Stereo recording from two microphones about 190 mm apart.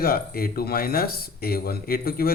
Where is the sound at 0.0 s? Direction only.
50° left (ahead or behind).